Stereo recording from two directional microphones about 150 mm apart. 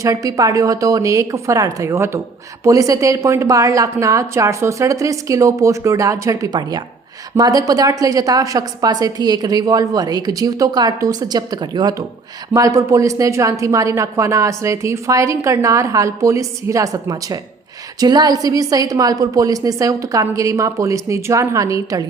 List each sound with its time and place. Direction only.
0.0 s a woman's voice: 20° right (ahead or behind)